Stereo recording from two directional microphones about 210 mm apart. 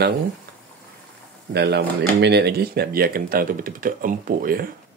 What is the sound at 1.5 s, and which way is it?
Speech, 50° right (ahead or behind).